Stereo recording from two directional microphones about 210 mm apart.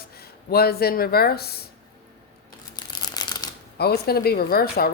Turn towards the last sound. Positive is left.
turn(degrees=45)  # may be behind; listen again after turning